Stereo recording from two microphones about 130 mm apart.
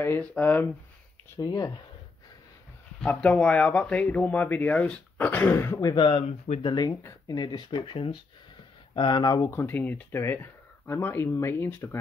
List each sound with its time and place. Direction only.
0.0 s speech: 15° left (ahead or behind)
1.3 s speech: 25° left (ahead or behind)
3.0 s speech: 5° left (ahead or behind); by 6.0 s 25° left (ahead or behind)
6.0 s speech: 45° left (ahead or behind)
6.9 s speech: 20° left (ahead or behind)
9.4 s speech: 15° left (ahead or behind)